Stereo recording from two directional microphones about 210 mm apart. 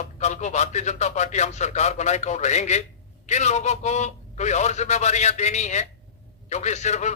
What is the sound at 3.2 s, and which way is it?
A man's voice, 35° left (ahead or behind).